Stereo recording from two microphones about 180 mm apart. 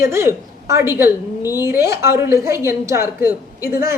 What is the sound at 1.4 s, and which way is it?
Speech, 20° left (ahead or behind).